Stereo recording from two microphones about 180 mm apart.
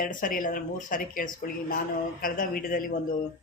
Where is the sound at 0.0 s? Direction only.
50° left (ahead or behind).